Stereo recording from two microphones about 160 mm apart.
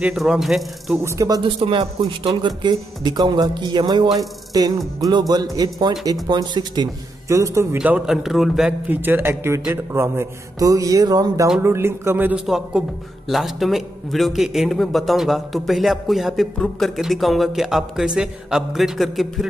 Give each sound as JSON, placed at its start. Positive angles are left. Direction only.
{"t": 0.0, "sound": "a man's voice", "side_deg": 0}
{"t": 0.9, "sound": "speech", "side_deg": -20}
{"t": 1.4, "sound": "speech", "side_deg": -30}
{"t": 7.7, "sound": "a man's voice", "side_deg": -10}